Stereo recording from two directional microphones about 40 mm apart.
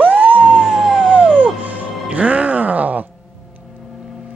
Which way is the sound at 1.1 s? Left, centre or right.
Right.